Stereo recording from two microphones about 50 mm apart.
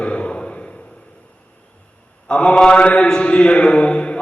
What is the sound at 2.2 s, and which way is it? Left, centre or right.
Mantra, centre.